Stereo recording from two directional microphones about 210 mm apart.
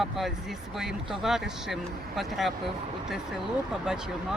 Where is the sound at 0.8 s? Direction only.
Centre (ahead or behind).